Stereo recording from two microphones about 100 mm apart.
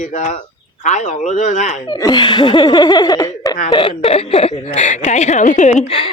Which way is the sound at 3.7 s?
65° left (ahead or behind).